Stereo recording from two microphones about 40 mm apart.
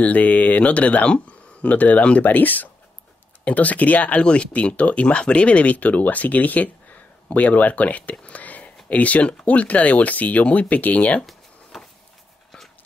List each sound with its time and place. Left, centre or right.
0.0 s speech: left
11.7 s vehicle: centre